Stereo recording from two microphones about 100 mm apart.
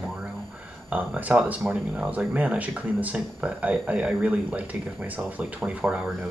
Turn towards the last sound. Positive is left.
turn(degrees=-10)  # may be behind; listen again after turning